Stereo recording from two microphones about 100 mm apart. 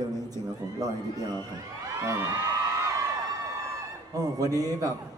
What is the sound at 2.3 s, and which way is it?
Speech, 45° right (ahead or behind).